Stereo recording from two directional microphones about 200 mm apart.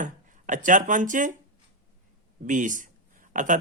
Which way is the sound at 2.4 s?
40° right (ahead or behind).